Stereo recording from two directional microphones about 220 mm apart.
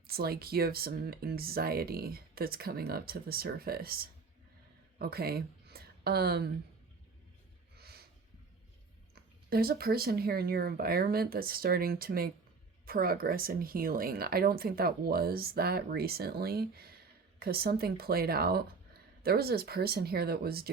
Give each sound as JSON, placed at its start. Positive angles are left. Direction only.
{"t": 0.1, "sound": "speech", "side_deg": -45}
{"t": 7.8, "sound": "a sound", "side_deg": -45}
{"t": 9.5, "sound": "speech", "side_deg": -45}